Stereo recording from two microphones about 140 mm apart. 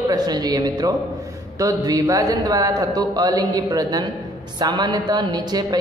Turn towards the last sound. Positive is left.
turn(degrees=-30)  # may be behind; listen again after turning